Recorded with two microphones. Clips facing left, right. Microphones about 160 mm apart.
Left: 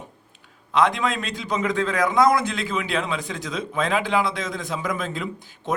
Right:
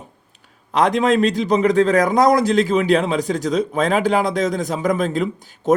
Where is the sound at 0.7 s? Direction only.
45° right (ahead or behind).